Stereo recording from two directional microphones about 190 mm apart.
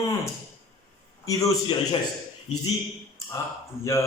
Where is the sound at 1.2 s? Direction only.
20° left (ahead or behind).